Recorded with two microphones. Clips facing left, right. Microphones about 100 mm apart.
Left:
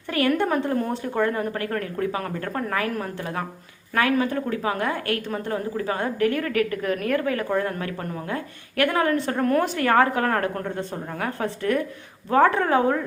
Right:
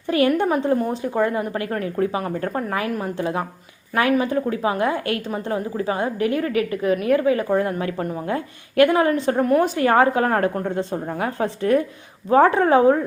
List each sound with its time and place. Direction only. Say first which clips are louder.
0.1 s a woman's voice: right 3 dB; 20° right (ahead or behind)